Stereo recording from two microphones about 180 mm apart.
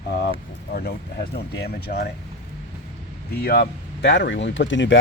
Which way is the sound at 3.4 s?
60° left (ahead or behind).